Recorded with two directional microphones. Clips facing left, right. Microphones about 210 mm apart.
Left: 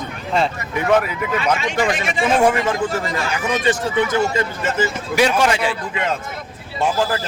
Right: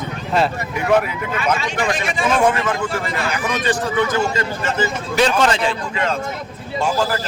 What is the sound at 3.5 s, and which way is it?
Speech, 25° left (ahead or behind).